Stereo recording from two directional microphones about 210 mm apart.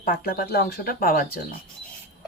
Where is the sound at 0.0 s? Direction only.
45° left (ahead or behind).